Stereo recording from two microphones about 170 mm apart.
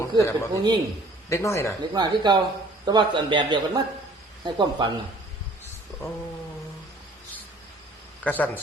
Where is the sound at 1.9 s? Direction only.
25° right (ahead or behind).